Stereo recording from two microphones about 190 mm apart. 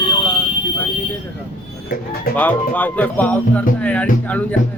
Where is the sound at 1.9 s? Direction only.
50° left (ahead or behind).